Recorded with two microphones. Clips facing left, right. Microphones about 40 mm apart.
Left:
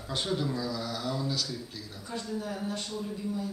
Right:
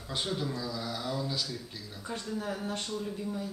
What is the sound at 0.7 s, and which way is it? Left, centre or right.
Speech, centre.